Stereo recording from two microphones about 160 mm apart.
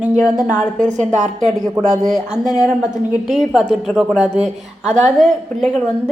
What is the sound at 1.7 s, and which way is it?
Speech, 25° right (ahead or behind).